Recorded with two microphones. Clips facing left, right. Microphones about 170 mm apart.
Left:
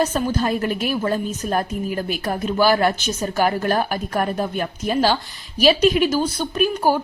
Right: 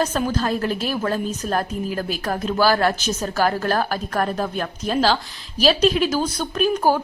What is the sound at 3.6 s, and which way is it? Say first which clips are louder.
Speech: left 1 dB; 15° left (ahead or behind).